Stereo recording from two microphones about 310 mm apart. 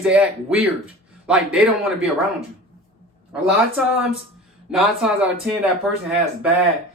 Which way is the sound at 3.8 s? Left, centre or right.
Centre.